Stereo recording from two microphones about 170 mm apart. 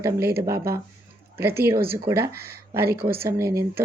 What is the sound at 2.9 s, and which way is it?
Speech, 65° right (ahead or behind).